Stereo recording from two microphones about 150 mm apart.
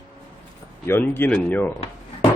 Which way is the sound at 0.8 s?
15° left (ahead or behind).